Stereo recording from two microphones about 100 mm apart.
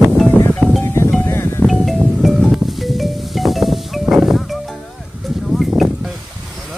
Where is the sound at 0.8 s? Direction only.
25° left (ahead or behind).